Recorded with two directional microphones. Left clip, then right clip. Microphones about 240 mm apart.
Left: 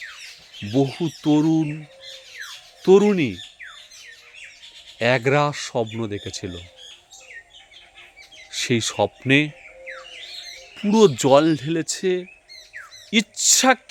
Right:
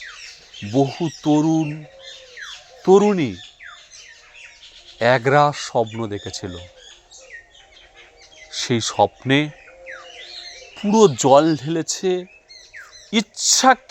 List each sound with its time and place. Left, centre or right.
0.7 s speech: centre
2.8 s speech: centre
4.9 s speech: centre
8.5 s speech: centre
10.8 s speech: centre